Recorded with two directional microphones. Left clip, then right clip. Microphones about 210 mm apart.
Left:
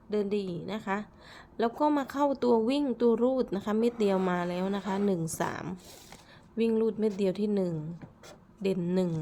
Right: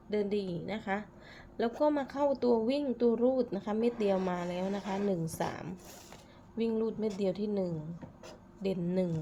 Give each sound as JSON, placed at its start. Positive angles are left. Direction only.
{"t": 0.1, "sound": "a woman's voice", "side_deg": 15}